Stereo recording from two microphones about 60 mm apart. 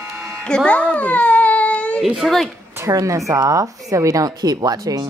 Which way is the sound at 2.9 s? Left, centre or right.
Right.